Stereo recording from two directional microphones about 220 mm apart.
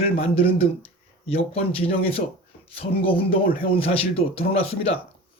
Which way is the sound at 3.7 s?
25° left (ahead or behind).